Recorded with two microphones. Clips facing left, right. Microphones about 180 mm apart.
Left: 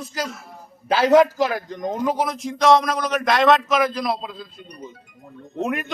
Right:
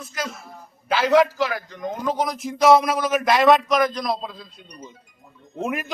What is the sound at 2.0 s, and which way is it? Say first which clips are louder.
Speech: left 1 dB; 10° left (ahead or behind).